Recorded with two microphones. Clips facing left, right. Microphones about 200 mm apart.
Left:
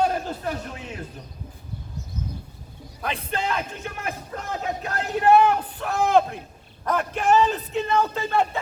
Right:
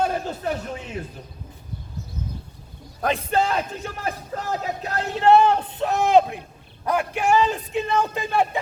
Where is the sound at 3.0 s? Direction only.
45° right (ahead or behind).